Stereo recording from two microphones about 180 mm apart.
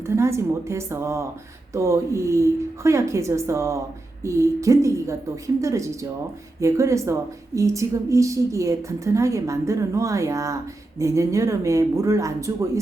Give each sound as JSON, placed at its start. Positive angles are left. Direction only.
{"t": 0.2, "sound": "a woman's voice", "side_deg": -15}